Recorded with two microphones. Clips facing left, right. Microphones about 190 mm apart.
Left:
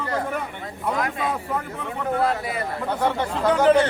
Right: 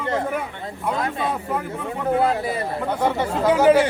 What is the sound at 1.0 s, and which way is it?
Speech, 30° right (ahead or behind).